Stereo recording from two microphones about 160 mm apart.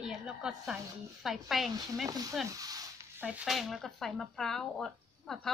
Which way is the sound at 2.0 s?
20° right (ahead or behind).